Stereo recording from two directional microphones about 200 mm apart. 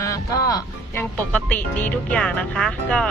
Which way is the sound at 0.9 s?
10° left (ahead or behind).